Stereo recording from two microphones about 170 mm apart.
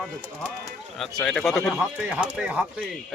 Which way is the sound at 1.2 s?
5° left (ahead or behind).